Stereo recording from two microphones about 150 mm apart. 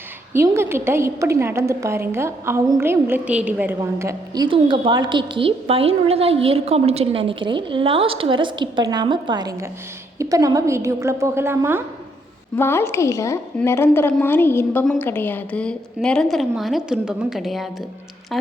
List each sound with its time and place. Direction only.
0.3 s a woman's voice: 15° right (ahead or behind)
3.8 s a woman's voice: 20° right (ahead or behind)
4.4 s a woman's voice: 35° right (ahead or behind); by 11.8 s 15° right (ahead or behind)
12.5 s a woman's voice: 15° left (ahead or behind); by 17.7 s centre (ahead or behind)